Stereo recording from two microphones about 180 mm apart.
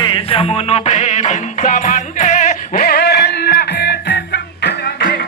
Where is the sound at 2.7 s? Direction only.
55° left (ahead or behind).